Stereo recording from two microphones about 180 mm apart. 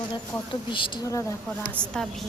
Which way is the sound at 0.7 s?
20° left (ahead or behind).